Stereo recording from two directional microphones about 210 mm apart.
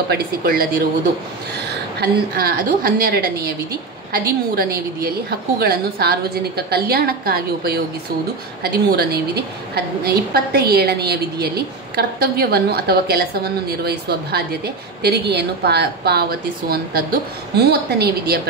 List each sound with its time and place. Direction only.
0.1 s a woman's voice: 45° right (ahead or behind)